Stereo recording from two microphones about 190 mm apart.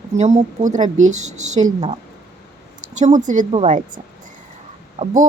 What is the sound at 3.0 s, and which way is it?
Speech, 40° right (ahead or behind).